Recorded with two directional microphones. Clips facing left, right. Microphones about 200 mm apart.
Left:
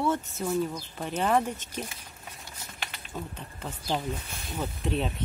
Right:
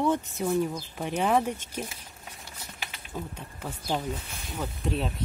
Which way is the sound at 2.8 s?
10° right (ahead or behind).